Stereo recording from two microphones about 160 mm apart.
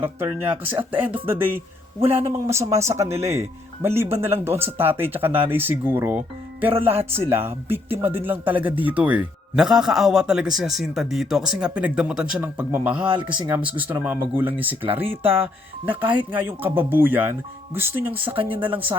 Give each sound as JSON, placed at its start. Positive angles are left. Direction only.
{"t": 0.0, "sound": "speech", "side_deg": -10}